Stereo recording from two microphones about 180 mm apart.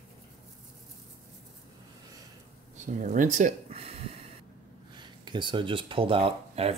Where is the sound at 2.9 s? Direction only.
45° right (ahead or behind).